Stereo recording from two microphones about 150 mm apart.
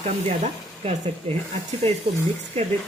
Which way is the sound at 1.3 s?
40° right (ahead or behind).